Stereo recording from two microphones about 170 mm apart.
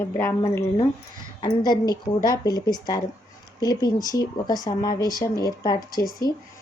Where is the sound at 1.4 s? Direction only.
25° left (ahead or behind).